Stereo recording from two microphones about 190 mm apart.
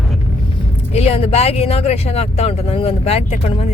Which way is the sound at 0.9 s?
30° left (ahead or behind).